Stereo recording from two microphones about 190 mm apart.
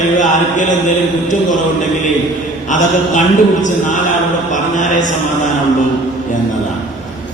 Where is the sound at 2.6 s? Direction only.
40° left (ahead or behind).